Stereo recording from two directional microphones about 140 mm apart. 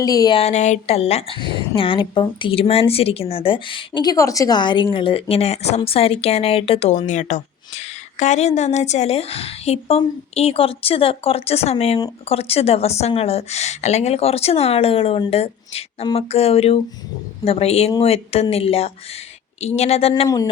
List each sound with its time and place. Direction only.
0.0 s speech: 25° left (ahead or behind)
0.3 s a woman's voice: 50° left (ahead or behind)
5.3 s a woman's voice: 50° left (ahead or behind)
20.2 s speech: 25° left (ahead or behind)